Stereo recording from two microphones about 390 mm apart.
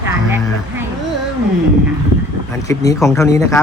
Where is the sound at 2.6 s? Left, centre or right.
Centre.